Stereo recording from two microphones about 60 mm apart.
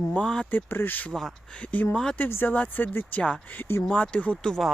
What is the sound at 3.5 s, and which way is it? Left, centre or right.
Speech, left.